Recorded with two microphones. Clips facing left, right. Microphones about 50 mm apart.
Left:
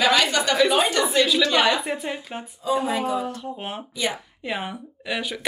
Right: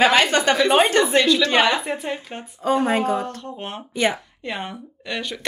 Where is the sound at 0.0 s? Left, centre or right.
Right.